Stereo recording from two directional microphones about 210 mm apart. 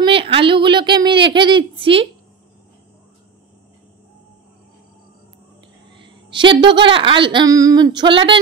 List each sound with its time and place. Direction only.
0.0 s a woman's voice: 25° right (ahead or behind)
6.0 s a woman's voice: 25° right (ahead or behind)